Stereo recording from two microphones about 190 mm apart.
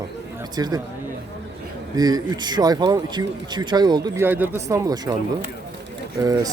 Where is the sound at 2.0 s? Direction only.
20° right (ahead or behind).